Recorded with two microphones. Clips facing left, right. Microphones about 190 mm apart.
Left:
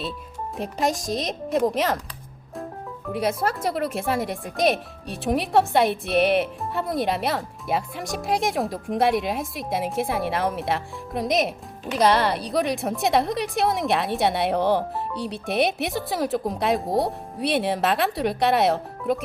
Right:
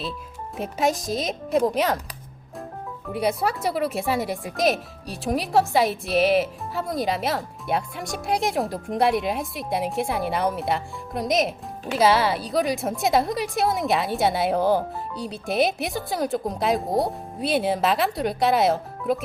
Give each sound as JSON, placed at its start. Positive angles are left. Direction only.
{"t": 0.5, "sound": "speech", "side_deg": 0}
{"t": 3.1, "sound": "speech", "side_deg": 0}